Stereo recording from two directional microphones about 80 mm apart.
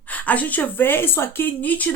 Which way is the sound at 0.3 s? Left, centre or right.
Centre.